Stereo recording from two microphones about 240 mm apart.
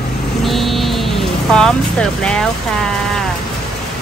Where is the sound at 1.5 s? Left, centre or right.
Centre.